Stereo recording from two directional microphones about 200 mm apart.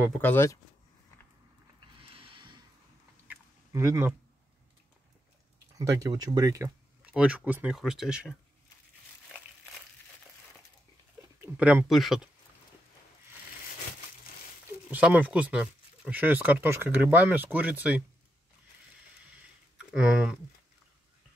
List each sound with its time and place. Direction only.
0.2 s speech: 10° left (ahead or behind)
2.0 s a sound: 25° right (ahead or behind)
3.3 s a sound: 15° right (ahead or behind)
5.8 s speech: 15° right (ahead or behind)
11.4 s speech: 5° right (ahead or behind)
14.9 s speech: 5° right (ahead or behind)
19.9 s speech: 5° right (ahead or behind)